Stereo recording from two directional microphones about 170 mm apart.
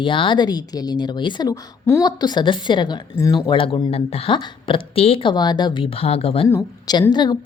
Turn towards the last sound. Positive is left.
turn(degrees=25)  # may be behind; listen again after turning